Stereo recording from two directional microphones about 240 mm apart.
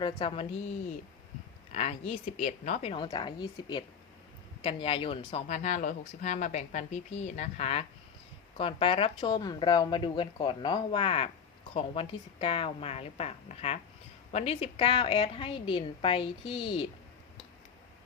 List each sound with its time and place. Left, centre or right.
0.0 s speech: left
1.7 s speech: left